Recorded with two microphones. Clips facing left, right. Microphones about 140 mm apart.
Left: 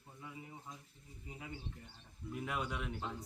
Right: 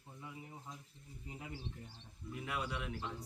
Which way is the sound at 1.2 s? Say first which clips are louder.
Even; centre (ahead or behind).